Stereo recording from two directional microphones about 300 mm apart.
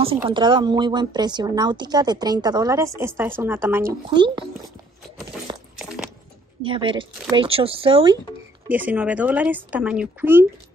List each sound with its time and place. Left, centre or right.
0.0 s a woman's voice: centre
5.5 s a sound: centre
6.6 s a woman's voice: centre
8.6 s speech: centre